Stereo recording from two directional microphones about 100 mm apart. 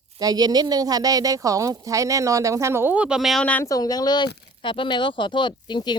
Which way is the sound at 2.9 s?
10° right (ahead or behind).